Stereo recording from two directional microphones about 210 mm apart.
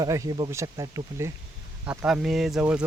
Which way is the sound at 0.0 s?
15° right (ahead or behind).